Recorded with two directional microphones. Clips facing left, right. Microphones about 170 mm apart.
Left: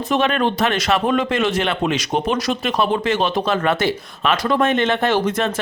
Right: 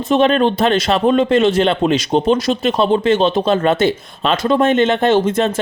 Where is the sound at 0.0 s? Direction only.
25° right (ahead or behind).